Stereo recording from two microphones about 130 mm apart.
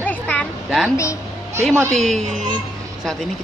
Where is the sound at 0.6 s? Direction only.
Centre (ahead or behind).